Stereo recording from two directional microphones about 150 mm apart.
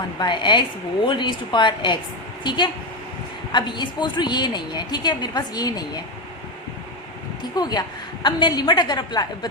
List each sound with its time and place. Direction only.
0.2 s a woman's voice: 30° left (ahead or behind)
7.5 s a woman's voice: 25° left (ahead or behind)